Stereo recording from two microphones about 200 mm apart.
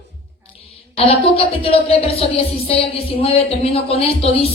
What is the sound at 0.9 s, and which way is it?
A woman's voice, 30° left (ahead or behind).